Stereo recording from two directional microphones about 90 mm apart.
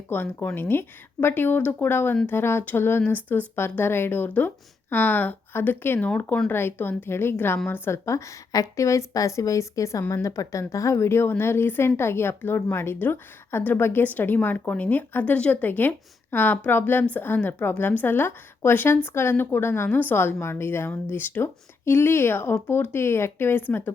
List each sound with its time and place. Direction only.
0.1 s a woman's voice: 20° left (ahead or behind)